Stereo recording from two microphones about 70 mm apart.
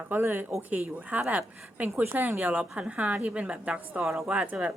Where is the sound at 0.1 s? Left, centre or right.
Right.